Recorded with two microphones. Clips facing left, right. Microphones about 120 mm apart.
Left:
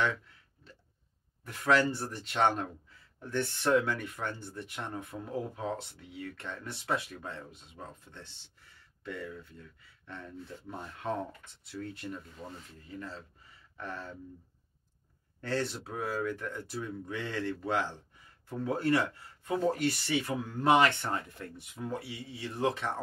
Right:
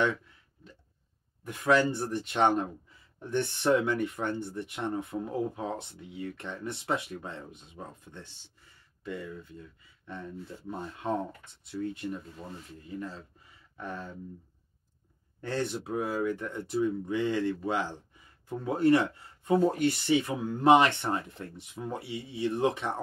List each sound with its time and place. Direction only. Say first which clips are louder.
1.4 s speech: right 2 dB; 15° right (ahead or behind)
13.7 s speech: right 2 dB; 15° right (ahead or behind)
15.4 s speech: right 1 dB; 15° right (ahead or behind)